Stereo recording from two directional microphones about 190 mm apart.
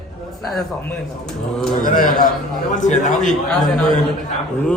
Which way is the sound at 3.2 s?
Centre (ahead or behind).